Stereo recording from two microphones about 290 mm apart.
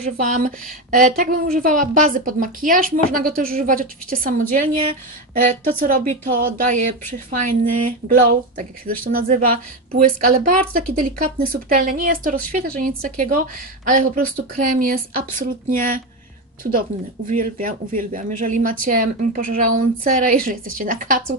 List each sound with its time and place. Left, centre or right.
0.2 s a woman's voice: right
17.3 s a woman's voice: right